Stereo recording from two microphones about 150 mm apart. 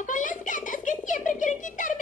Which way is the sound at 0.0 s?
60° left (ahead or behind).